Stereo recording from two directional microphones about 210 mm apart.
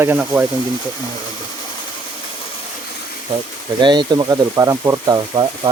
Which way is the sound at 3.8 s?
20° right (ahead or behind).